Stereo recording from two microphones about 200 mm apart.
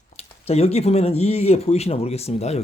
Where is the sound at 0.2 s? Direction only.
30° left (ahead or behind).